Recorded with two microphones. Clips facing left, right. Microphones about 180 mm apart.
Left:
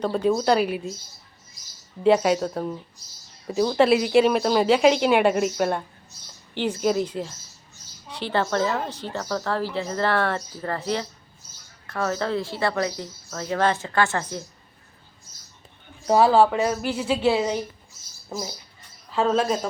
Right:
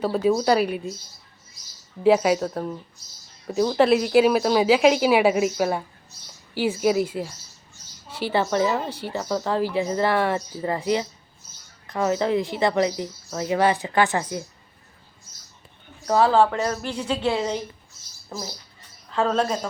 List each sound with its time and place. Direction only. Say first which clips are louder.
0.0 s a woman's voice: right 1 dB; 5° right (ahead or behind)
2.0 s a woman's voice: right 1 dB; 5° right (ahead or behind)
16.0 s a woman's voice: left 1 dB; 15° left (ahead or behind)